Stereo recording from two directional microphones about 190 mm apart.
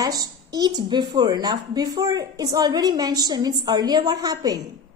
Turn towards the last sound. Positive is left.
turn(degrees=-20)  # may be behind; listen again after turning